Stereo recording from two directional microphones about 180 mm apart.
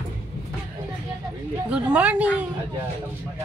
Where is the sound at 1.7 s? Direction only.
5° right (ahead or behind).